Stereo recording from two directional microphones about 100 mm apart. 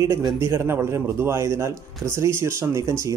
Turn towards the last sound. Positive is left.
turn(degrees=-35)  # may be behind; listen again after turning